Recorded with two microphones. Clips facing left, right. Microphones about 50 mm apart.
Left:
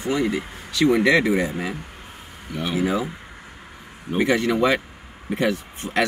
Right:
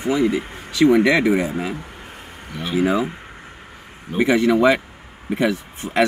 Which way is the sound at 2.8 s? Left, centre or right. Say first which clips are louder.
Right 5 dB; right.